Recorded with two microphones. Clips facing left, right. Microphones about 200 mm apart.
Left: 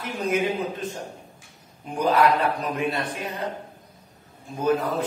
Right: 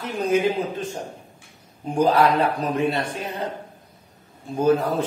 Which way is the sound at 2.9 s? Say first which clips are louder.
Right 3 dB; 25° right (ahead or behind).